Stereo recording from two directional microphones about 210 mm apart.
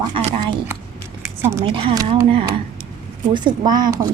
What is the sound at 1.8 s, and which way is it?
A woman's voice, 25° right (ahead or behind).